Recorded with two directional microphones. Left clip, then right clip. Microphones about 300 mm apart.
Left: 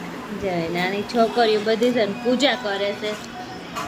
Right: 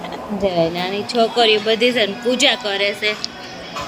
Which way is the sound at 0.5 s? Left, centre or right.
Centre.